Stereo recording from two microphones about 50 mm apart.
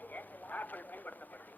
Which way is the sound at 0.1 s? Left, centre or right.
Left.